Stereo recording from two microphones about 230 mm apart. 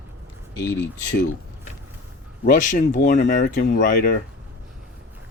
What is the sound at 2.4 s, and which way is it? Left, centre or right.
Speech, left.